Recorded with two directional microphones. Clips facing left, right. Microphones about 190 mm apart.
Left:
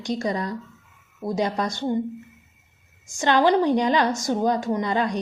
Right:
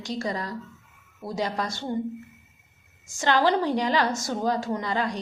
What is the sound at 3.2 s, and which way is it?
A woman's voice, 20° left (ahead or behind).